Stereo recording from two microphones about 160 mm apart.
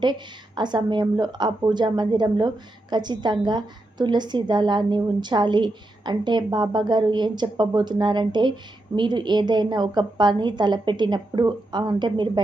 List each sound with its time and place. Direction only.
0.0 s a woman's voice: 30° right (ahead or behind)